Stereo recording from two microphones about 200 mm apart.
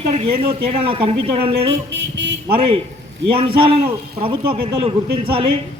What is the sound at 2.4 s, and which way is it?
Speech, 25° right (ahead or behind).